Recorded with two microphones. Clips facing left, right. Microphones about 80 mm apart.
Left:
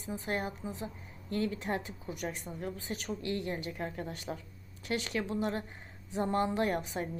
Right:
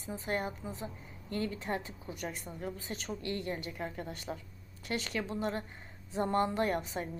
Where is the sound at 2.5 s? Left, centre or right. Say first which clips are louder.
Left 2 dB; centre.